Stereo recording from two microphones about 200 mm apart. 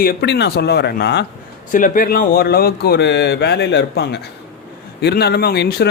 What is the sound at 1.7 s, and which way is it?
Speech, 40° left (ahead or behind).